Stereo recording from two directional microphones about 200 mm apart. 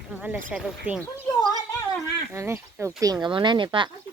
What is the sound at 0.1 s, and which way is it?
Speech, 10° right (ahead or behind).